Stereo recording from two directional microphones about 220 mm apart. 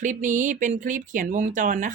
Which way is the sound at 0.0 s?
35° right (ahead or behind).